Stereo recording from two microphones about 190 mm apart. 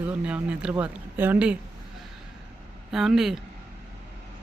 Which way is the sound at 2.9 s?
Centre (ahead or behind).